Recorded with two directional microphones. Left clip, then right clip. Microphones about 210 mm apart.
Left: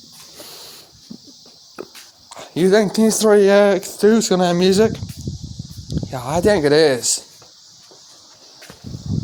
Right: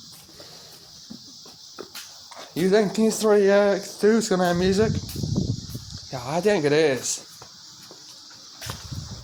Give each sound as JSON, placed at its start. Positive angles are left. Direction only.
{"t": 2.3, "sound": "speech", "side_deg": 50}
{"t": 6.1, "sound": "speech", "side_deg": 45}